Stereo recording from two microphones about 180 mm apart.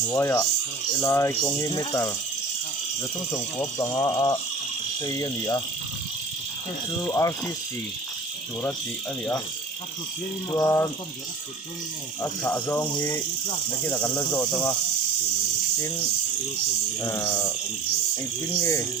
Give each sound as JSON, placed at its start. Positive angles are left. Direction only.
{"t": 0.1, "sound": "speech", "side_deg": 15}
{"t": 3.3, "sound": "speech", "side_deg": 15}
{"t": 7.0, "sound": "speech", "side_deg": 20}
{"t": 10.5, "sound": "speech", "side_deg": 15}
{"t": 12.2, "sound": "speech", "side_deg": 10}
{"t": 17.0, "sound": "speech", "side_deg": 15}
{"t": 18.6, "sound": "speech", "side_deg": 15}